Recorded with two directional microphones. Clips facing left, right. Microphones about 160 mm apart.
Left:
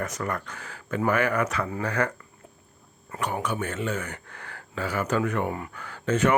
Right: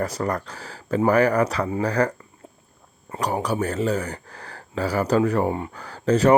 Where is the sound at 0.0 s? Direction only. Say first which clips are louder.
Right 5 dB; 35° right (ahead or behind).